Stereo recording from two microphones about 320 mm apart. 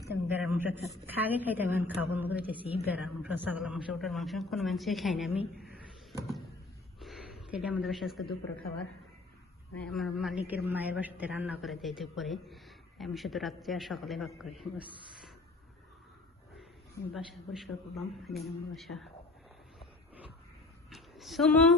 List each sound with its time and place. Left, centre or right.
0.1 s a woman's voice: centre
5.5 s speech: left
7.0 s a sound: centre
9.8 s a woman's voice: centre
17.2 s a woman's voice: centre
20.9 s speech: centre